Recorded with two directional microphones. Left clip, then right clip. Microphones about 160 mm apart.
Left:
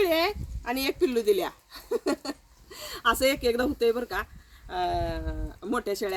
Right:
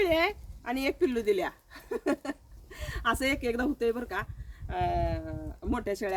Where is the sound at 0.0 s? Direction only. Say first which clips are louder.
Left 2 dB; 15° right (ahead or behind).